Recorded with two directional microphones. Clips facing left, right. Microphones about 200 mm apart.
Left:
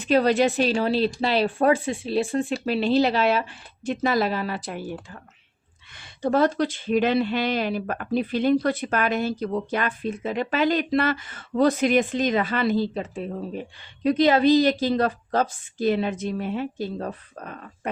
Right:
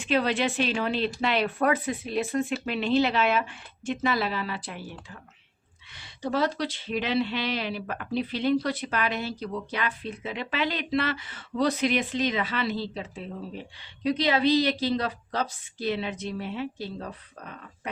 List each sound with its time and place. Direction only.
0.0 s speech: 40° left (ahead or behind)
5.9 s speech: 50° left (ahead or behind)